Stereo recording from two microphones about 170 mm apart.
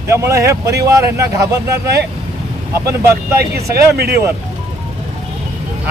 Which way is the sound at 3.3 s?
70° right (ahead or behind).